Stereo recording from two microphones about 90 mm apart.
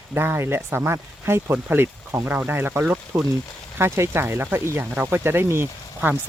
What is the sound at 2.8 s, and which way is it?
Speech, 10° right (ahead or behind).